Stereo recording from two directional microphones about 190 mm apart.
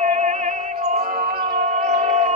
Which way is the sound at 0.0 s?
35° right (ahead or behind).